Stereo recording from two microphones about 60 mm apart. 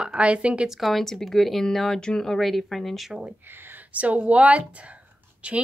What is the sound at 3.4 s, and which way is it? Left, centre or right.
Speech, right.